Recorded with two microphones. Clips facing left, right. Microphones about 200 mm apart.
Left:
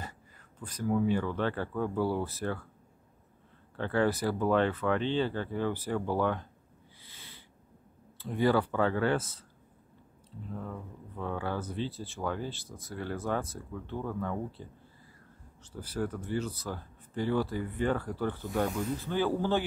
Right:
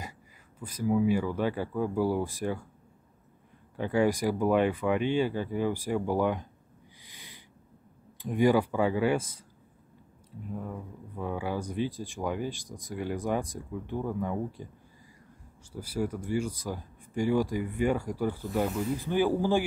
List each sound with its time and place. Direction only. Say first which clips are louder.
0.6 s speech: right 3 dB; 10° right (ahead or behind)
3.7 s speech: right 2 dB; 10° right (ahead or behind)
7.0 s a sound: right 1 dB; 15° right (ahead or behind)
8.2 s speech: right 3 dB; 15° right (ahead or behind)
10.5 s speech: right 2 dB; 10° right (ahead or behind)
15.7 s speech: right 2 dB; 10° right (ahead or behind)